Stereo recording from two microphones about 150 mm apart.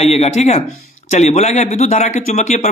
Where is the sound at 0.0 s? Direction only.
45° left (ahead or behind).